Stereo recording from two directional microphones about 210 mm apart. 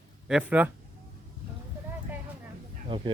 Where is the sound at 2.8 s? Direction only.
25° right (ahead or behind).